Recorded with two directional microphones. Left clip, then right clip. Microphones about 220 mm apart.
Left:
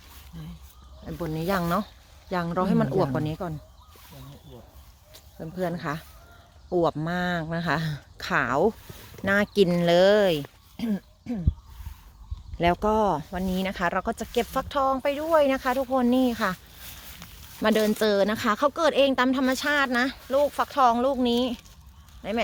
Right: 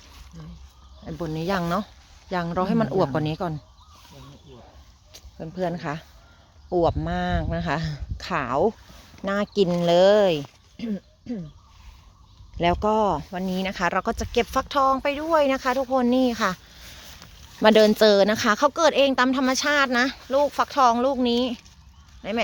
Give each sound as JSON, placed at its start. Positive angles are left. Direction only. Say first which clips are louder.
{"t": 1.2, "sound": "speech", "louder": "right 1 dB", "side_deg": -10}
{"t": 5.1, "sound": "speech", "louder": "right 2 dB", "side_deg": -10}
{"t": 10.8, "sound": "a sound", "louder": "left 1 dB", "side_deg": 40}
{"t": 12.5, "sound": "speech", "louder": "right 1 dB", "side_deg": -5}
{"t": 17.6, "sound": "speech", "louder": "right 7 dB", "side_deg": -20}